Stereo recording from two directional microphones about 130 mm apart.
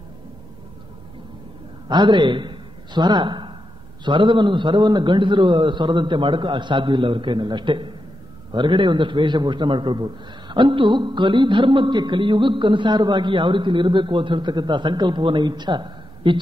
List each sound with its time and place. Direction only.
1.9 s a man's voice: 35° right (ahead or behind)